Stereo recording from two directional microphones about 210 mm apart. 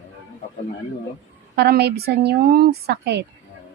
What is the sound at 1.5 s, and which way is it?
A woman's voice, 50° right (ahead or behind).